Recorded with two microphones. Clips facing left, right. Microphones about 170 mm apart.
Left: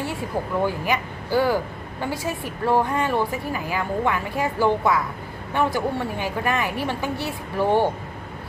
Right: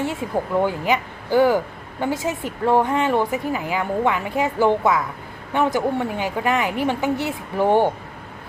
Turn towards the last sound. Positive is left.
turn(degrees=-15)  # may be behind; listen again after turning